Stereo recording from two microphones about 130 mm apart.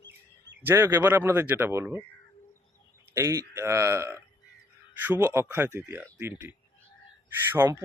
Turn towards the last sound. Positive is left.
turn(degrees=-15)  # may be behind; listen again after turning